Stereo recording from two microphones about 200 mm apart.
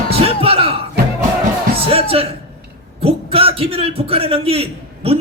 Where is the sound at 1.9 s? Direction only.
30° right (ahead or behind).